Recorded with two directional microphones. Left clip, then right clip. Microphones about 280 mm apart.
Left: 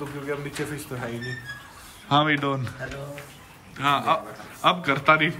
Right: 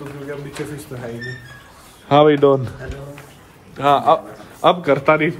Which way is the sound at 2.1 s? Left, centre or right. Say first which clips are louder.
Right 9 dB; centre.